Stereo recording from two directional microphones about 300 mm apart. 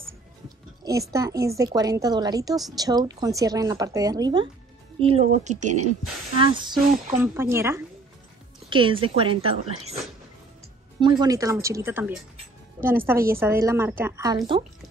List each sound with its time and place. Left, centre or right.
1.1 s a woman's voice: centre
11.0 s a woman's voice: centre